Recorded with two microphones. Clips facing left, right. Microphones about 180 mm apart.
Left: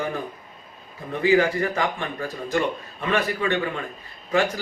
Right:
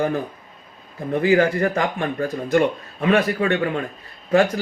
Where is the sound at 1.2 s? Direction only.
45° right (ahead or behind).